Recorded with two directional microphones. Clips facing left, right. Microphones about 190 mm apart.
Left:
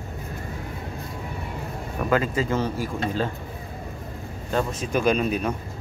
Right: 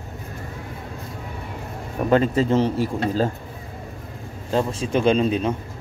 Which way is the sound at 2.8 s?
40° right (ahead or behind).